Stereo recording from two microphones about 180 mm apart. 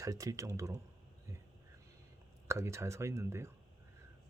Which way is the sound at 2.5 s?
15° right (ahead or behind).